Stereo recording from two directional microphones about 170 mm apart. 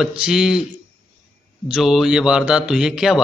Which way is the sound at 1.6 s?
Centre (ahead or behind).